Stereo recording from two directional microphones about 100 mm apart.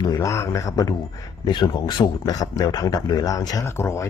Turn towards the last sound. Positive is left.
turn(degrees=25)  # may be behind; listen again after turning